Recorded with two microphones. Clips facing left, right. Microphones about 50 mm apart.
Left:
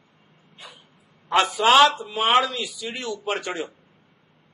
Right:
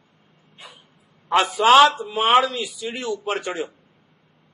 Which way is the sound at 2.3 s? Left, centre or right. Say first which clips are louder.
Right 3 dB; centre.